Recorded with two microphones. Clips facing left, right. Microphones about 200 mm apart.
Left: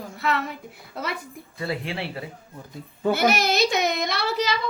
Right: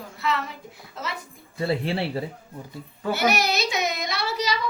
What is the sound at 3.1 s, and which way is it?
Speech, 55° left (ahead or behind).